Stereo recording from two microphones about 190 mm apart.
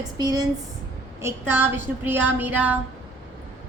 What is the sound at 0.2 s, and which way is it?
A woman's voice, 20° right (ahead or behind).